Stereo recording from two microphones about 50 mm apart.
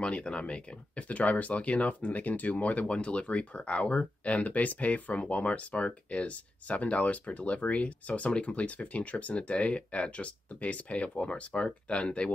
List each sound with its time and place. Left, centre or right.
0.0 s speech: left